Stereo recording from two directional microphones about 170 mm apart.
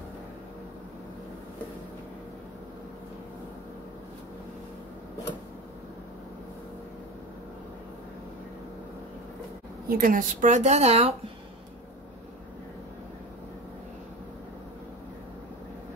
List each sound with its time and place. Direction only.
9.8 s a woman's voice: 55° right (ahead or behind); by 11.1 s 40° right (ahead or behind)